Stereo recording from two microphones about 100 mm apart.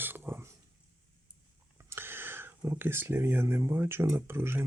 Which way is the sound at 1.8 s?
25° right (ahead or behind).